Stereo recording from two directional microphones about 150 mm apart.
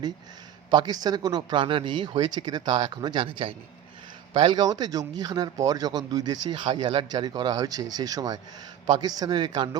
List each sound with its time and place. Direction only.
0.7 s speech: 30° right (ahead or behind)